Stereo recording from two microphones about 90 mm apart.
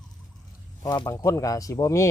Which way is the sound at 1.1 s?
35° left (ahead or behind).